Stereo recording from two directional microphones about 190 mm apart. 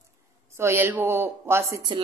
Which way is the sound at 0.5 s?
10° right (ahead or behind).